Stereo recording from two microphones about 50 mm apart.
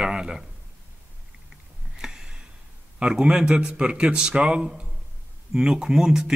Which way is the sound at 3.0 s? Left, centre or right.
Right.